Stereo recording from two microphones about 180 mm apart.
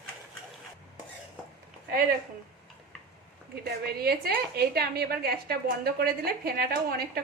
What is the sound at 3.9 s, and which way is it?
A woman's voice, 60° right (ahead or behind).